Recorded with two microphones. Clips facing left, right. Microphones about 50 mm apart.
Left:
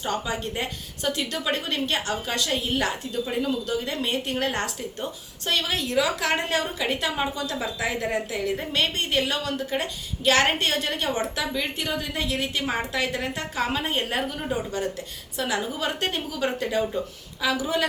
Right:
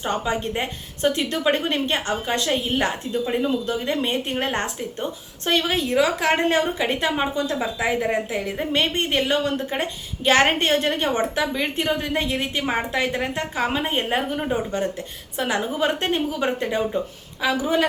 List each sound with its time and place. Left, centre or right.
0.0 s a woman's voice: right